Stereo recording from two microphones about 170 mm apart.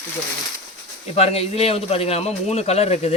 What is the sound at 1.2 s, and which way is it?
A man's voice, 35° left (ahead or behind).